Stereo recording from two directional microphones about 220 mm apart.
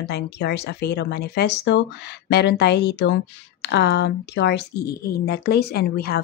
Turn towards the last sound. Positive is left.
turn(degrees=45)  # may be behind; listen again after turning